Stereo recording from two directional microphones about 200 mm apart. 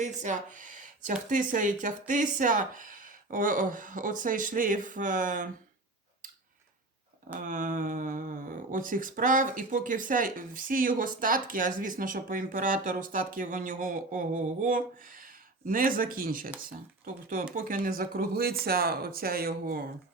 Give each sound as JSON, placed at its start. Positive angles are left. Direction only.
{"t": 0.0, "sound": "speech", "side_deg": -40}
{"t": 7.3, "sound": "speech", "side_deg": -40}
{"t": 17.5, "sound": "speech", "side_deg": -40}